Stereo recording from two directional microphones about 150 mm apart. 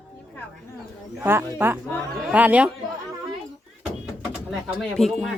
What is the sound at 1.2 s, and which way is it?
Speech, 15° right (ahead or behind).